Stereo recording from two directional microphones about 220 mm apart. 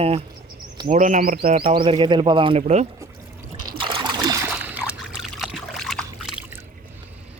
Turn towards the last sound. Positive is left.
turn(degrees=0)  # may be behind; listen again after turning